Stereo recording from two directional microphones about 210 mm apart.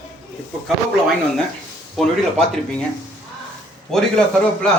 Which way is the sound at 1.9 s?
Centre (ahead or behind).